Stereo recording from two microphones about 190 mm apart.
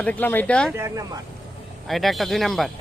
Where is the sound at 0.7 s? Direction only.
15° right (ahead or behind).